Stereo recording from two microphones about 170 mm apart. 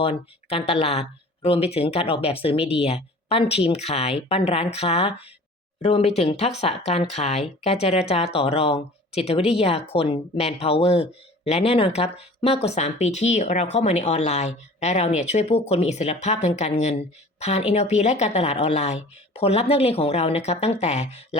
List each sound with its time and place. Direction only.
0.0 s speech: 35° left (ahead or behind)